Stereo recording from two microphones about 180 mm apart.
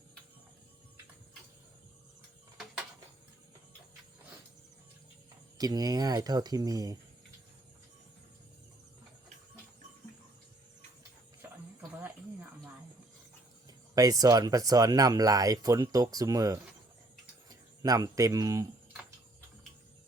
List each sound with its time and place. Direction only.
5.5 s speech: 20° right (ahead or behind)
11.4 s cricket: 10° right (ahead or behind)
13.9 s speech: 20° right (ahead or behind)